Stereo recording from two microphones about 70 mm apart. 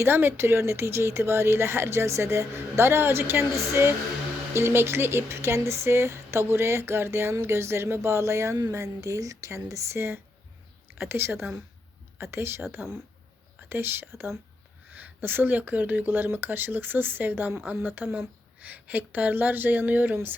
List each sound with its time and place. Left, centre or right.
0.0 s speech: right